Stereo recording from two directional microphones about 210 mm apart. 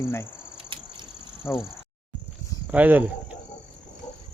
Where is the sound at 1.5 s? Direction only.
15° left (ahead or behind).